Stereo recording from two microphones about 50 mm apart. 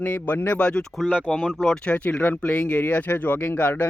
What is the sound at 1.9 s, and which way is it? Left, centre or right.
Speech, left.